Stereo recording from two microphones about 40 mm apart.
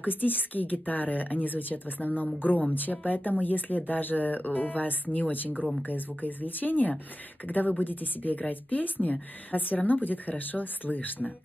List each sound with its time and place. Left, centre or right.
0.0 s a woman's voice: left